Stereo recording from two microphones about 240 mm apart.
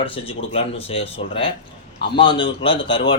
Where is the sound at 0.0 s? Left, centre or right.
Left.